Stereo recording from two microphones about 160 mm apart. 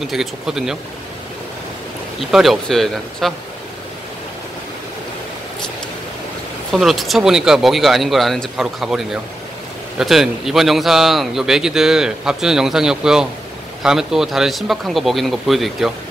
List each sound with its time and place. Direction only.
0.0 s a man's voice: centre (ahead or behind)
2.1 s a man's voice: centre (ahead or behind)
6.7 s a man's voice: centre (ahead or behind)